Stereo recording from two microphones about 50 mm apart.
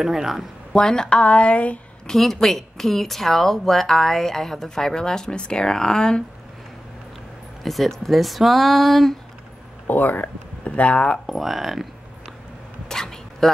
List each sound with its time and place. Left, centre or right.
0.0 s speech: centre
0.7 s speech: centre
1.2 s speech: left
2.0 s speech: centre
7.6 s speech: centre
9.8 s speech: left
11.2 s speech: centre
12.8 s a sound: centre